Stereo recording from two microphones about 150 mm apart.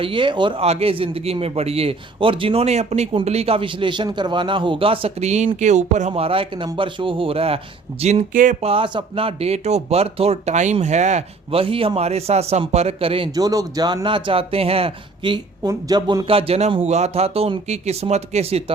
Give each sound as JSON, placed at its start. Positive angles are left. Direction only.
{"t": 0.0, "sound": "speech", "side_deg": -35}
{"t": 8.6, "sound": "speech", "side_deg": -35}
{"t": 13.3, "sound": "speech", "side_deg": -25}